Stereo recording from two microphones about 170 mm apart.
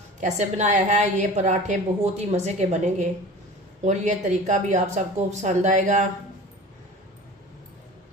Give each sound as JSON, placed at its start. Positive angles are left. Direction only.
{"t": 0.2, "sound": "a woman's voice", "side_deg": -45}